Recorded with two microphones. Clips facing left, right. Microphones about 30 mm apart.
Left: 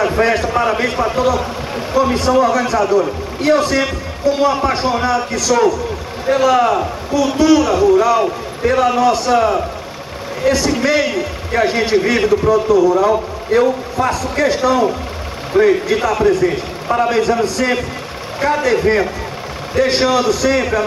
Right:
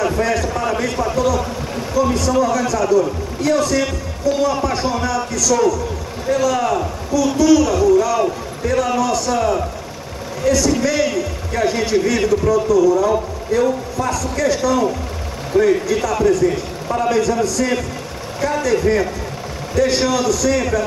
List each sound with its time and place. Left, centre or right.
0.0 s a man's voice: left